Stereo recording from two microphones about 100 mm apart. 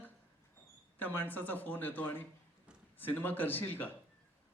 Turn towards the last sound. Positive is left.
turn(degrees=20)  # may be behind; listen again after turning